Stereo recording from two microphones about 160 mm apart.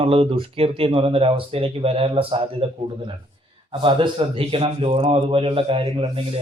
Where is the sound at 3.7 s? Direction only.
30° right (ahead or behind).